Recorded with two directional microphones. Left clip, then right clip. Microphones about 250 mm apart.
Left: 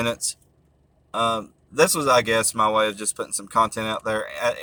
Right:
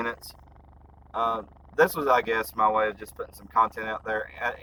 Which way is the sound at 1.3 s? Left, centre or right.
Centre.